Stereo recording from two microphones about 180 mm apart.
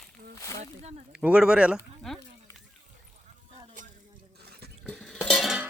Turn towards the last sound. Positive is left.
turn(degrees=0)  # may be behind; listen again after turning